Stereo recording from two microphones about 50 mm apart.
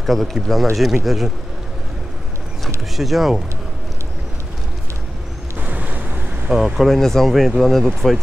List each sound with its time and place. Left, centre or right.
0.0 s speech: centre
3.0 s speech: centre
5.6 s ocean: right
6.5 s speech: centre
6.9 s speech: centre